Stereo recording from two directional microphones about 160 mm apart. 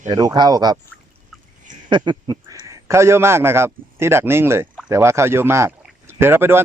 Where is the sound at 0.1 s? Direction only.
25° right (ahead or behind).